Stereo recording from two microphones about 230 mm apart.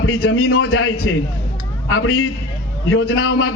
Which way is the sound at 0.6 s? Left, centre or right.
Left.